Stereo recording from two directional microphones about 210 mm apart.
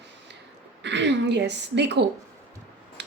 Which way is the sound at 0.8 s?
55° right (ahead or behind).